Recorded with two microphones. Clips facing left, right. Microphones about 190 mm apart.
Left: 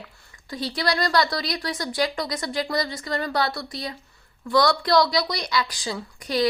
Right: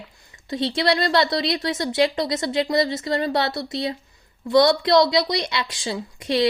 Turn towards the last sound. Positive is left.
turn(degrees=-25)  # may be behind; listen again after turning